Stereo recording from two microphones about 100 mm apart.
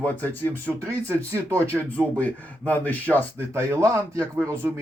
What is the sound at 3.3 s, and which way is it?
A man's voice, 25° right (ahead or behind).